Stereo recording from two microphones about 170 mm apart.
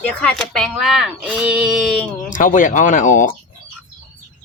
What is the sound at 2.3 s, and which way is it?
Speech, 50° left (ahead or behind).